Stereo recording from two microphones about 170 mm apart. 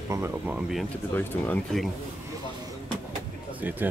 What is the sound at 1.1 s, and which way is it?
Speech, 10° left (ahead or behind).